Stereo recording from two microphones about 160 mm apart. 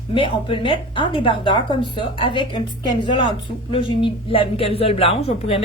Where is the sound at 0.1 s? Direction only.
30° left (ahead or behind).